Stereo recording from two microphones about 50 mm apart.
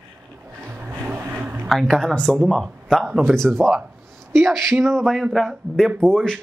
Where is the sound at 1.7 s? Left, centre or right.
Centre.